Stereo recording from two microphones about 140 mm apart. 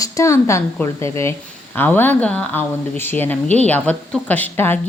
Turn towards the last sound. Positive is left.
turn(degrees=15)  # may be behind; listen again after turning